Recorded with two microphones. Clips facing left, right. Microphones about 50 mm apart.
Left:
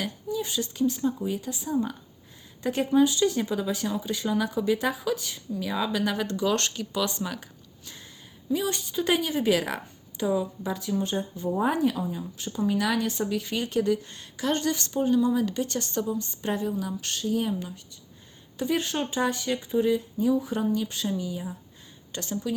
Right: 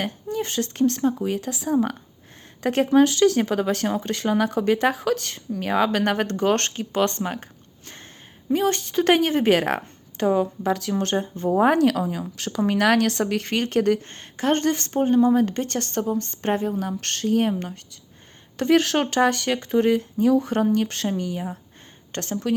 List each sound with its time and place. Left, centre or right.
0.0 s speech: right
8.4 s speech: right
11.3 s speech: right
11.6 s a woman's voice: right